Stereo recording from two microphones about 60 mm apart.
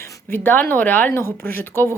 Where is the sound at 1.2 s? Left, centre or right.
Left.